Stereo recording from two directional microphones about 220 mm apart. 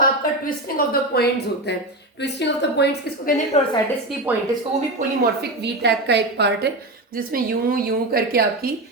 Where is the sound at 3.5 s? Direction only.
30° left (ahead or behind).